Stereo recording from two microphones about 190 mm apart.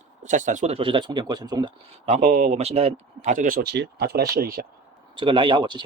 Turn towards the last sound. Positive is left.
turn(degrees=-25)  # may be behind; listen again after turning